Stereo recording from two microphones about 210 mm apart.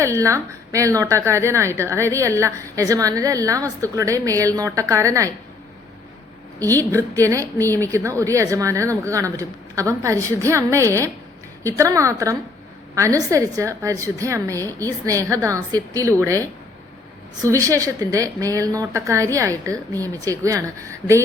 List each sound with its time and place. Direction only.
0.0 s a woman's voice: 15° right (ahead or behind)
6.6 s a woman's voice: 10° left (ahead or behind)
6.9 s a woman's voice: 15° right (ahead or behind)
7.6 s a woman's voice: 10° left (ahead or behind)
7.9 s a woman's voice: 15° right (ahead or behind)